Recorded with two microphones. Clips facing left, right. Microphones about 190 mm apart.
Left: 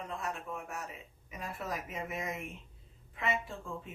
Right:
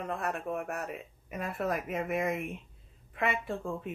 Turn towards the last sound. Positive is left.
turn(degrees=-60)  # may be behind; listen again after turning